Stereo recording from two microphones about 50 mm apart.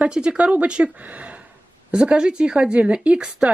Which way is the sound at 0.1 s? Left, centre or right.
Centre.